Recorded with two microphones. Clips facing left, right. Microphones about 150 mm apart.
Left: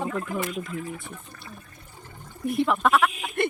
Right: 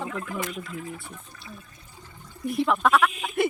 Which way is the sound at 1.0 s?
55° left (ahead or behind).